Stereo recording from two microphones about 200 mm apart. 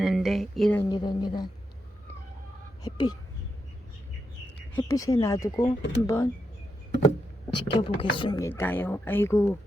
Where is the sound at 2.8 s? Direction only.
20° left (ahead or behind).